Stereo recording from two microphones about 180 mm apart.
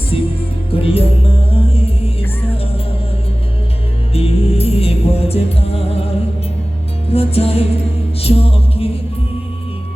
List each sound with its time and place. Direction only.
0.1 s music: 30° left (ahead or behind)
4.1 s music: 35° left (ahead or behind)
7.1 s music: 35° left (ahead or behind)